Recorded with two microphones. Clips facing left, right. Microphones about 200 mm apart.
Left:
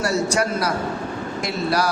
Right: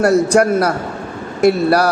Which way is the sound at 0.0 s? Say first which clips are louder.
Right 9 dB; 60° right (ahead or behind).